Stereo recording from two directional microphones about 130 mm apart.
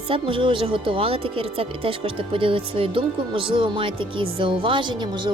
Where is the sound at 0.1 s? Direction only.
40° right (ahead or behind).